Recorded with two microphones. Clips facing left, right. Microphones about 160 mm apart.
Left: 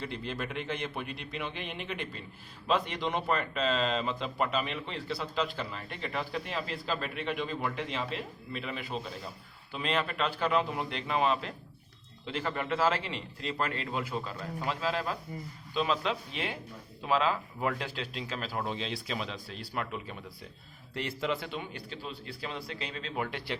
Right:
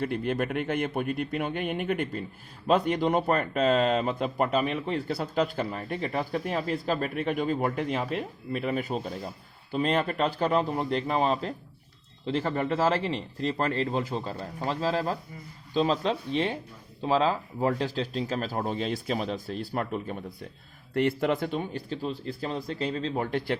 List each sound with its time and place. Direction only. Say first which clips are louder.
0.0 s speech: right 9 dB; 55° right (ahead or behind)
20.9 s speech: right 8 dB; 55° right (ahead or behind); by 23.4 s 35° right (ahead or behind)